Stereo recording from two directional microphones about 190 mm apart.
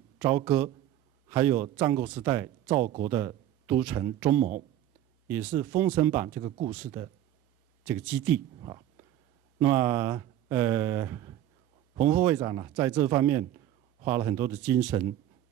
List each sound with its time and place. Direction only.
0.2 s a man's voice: 5° right (ahead or behind)
4.4 s speech: 45° right (ahead or behind)
5.3 s speech: 10° right (ahead or behind)
8.5 s a sound: 25° right (ahead or behind)
9.6 s speech: 10° right (ahead or behind)